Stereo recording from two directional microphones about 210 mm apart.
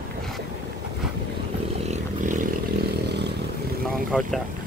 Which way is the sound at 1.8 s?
35° right (ahead or behind).